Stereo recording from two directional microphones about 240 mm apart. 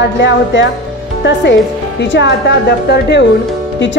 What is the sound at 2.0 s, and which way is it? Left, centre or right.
A woman's voice, left.